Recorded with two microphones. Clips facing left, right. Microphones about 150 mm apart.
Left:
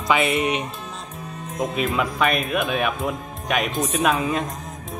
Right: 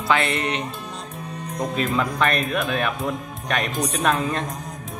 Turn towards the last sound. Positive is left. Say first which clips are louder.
# left 1 dB
turn(degrees=5)  # may be behind; listen again after turning